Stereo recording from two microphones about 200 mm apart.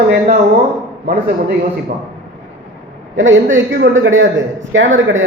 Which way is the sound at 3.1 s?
70° right (ahead or behind).